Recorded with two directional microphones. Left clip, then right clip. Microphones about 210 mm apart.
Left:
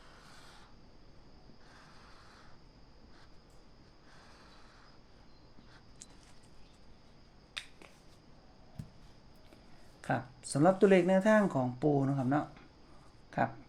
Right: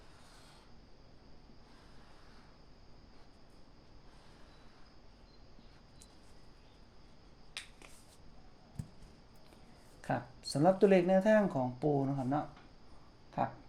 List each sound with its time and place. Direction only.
10.0 s speech: 15° left (ahead or behind)